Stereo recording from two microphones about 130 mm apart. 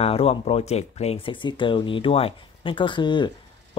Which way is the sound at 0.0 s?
50° left (ahead or behind).